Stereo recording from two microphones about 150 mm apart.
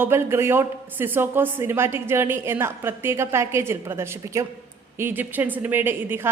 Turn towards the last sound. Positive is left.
turn(degrees=-15)  # may be behind; listen again after turning